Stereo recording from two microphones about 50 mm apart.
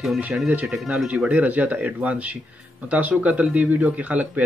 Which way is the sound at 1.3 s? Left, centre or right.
Right.